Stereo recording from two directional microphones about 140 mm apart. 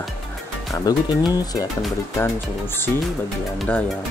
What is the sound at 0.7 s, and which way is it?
Speech, 25° left (ahead or behind).